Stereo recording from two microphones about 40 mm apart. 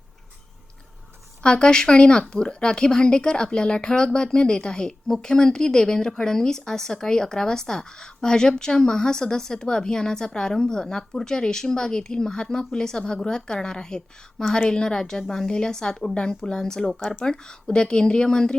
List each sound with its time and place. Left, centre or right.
1.4 s a woman's voice: left